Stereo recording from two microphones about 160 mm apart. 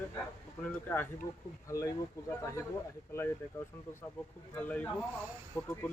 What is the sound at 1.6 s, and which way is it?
Speech, 20° left (ahead or behind).